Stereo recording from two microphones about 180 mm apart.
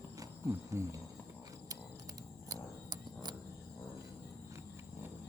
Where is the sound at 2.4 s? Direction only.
20° right (ahead or behind).